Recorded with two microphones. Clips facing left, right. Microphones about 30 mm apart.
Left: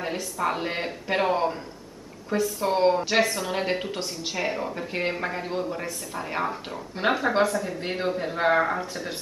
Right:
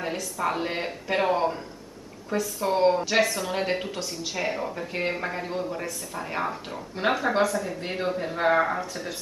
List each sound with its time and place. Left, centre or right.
0.0 s speech: centre
4.0 s speech: centre
4.4 s speech: centre